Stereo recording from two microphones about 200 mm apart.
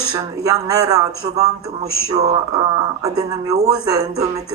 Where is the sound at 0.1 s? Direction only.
20° right (ahead or behind).